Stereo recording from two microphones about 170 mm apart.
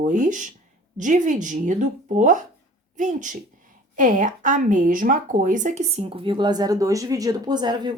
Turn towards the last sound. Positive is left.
turn(degrees=-25)  # may be behind; listen again after turning